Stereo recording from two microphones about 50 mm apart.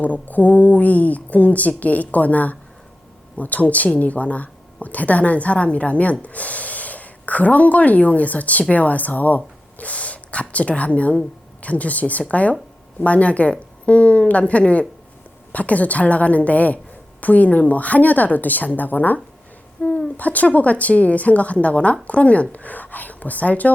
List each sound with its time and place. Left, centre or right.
0.0 s a woman's voice: left